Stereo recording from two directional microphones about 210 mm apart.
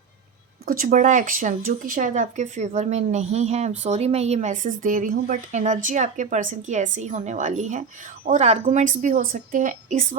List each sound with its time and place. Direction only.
0.6 s speech: 40° right (ahead or behind)